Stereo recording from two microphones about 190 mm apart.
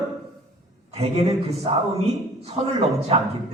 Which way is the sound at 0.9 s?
35° right (ahead or behind).